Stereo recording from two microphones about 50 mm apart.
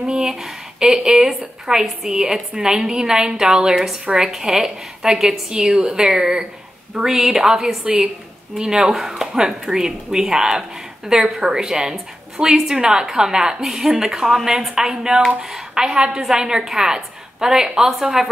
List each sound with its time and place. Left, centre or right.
0.0 s a woman's voice: centre
17.7 s a woman's voice: centre